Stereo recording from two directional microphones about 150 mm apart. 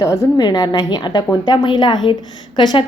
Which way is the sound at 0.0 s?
25° left (ahead or behind).